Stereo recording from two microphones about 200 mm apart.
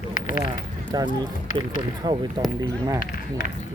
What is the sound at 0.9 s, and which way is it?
Speech, 20° right (ahead or behind).